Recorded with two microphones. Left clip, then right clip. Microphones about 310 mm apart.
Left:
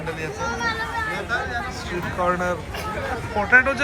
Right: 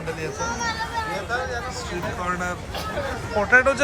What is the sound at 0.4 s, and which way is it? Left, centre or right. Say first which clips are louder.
Children playing: left 2 dB; centre.